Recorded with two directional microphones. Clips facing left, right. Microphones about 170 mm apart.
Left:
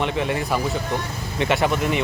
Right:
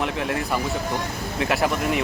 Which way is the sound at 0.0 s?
Centre (ahead or behind).